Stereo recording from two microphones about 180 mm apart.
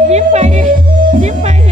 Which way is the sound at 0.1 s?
40° right (ahead or behind).